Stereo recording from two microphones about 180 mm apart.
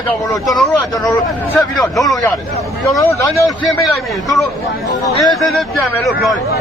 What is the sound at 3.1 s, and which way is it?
Speech, 15° left (ahead or behind).